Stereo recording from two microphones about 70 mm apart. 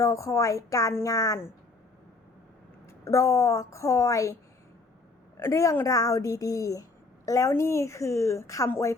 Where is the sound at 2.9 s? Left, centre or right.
Left.